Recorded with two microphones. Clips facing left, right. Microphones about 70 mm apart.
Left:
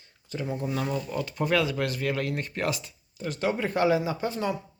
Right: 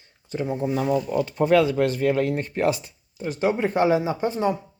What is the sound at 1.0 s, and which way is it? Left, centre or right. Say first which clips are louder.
Speech: right 7 dB; right.